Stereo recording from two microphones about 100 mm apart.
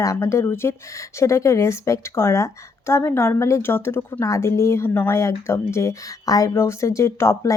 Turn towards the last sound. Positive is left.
turn(degrees=30)  # may be behind; listen again after turning